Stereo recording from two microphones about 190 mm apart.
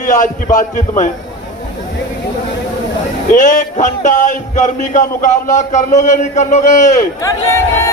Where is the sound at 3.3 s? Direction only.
40° left (ahead or behind).